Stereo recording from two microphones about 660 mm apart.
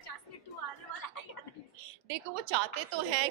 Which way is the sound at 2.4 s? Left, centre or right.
Right.